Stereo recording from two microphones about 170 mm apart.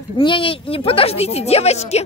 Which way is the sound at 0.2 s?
30° left (ahead or behind).